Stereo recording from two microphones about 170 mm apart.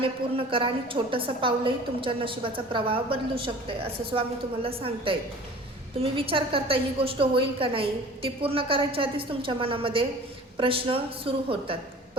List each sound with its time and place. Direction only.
0.0 s a woman's voice: 30° right (ahead or behind)